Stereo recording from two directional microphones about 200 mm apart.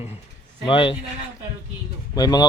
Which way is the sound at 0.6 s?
25° left (ahead or behind).